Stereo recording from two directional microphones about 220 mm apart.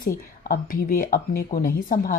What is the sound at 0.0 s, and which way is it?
Speech, 40° left (ahead or behind).